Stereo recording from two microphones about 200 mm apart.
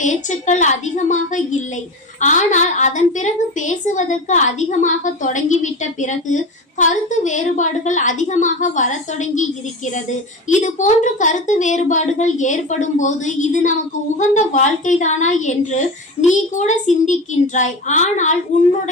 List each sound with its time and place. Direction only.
0.0 s a woman's voice: 35° left (ahead or behind)